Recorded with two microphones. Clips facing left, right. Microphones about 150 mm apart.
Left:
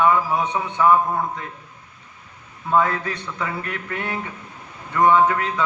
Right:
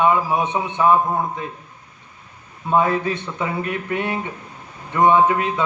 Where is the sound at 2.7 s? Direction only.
20° right (ahead or behind).